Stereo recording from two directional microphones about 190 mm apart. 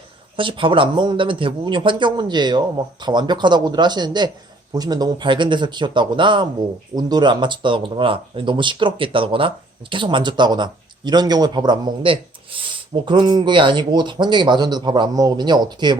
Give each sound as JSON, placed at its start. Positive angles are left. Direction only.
{"t": 0.3, "sound": "a man's voice", "side_deg": -25}